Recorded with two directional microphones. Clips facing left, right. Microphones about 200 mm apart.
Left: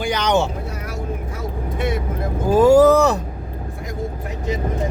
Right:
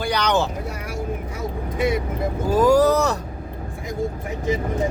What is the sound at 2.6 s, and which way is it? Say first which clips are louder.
Speech: left 5 dB; 25° left (ahead or behind).